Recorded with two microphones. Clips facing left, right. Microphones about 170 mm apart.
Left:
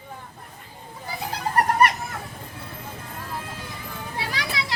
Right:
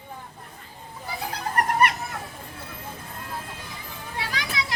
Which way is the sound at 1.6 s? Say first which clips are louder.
Left 3 dB; 35° left (ahead or behind).